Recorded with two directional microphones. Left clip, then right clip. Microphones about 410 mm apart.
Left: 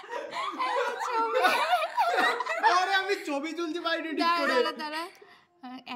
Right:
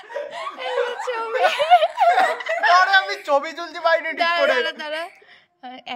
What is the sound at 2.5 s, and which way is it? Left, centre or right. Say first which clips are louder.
Snicker: right 11 dB; centre.